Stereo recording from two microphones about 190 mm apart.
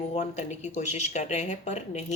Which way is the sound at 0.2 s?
40° left (ahead or behind).